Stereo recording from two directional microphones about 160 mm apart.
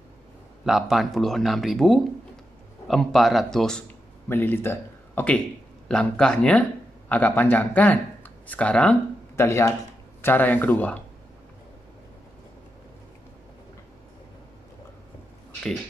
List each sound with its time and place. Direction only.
0.7 s speech: centre (ahead or behind)